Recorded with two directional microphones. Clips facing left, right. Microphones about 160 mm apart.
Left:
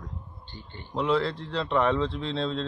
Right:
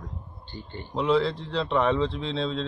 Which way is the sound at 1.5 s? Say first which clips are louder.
Even; 15° right (ahead or behind).